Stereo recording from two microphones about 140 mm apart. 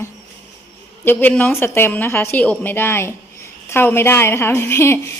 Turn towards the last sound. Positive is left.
turn(degrees=20)  # may be behind; listen again after turning